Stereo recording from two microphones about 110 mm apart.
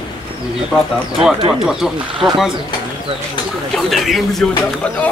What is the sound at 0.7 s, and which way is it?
Speech, 5° left (ahead or behind).